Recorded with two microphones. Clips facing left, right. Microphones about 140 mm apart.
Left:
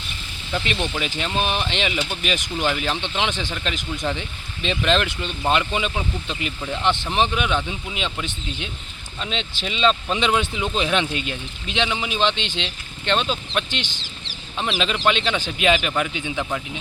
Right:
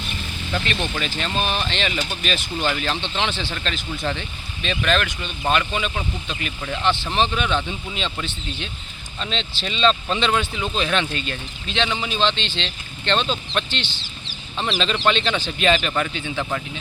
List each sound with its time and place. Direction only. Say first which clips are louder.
0.5 s speech: left 1 dB; 15° left (ahead or behind)